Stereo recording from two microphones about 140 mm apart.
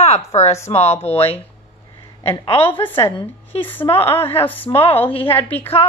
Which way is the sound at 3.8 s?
30° left (ahead or behind).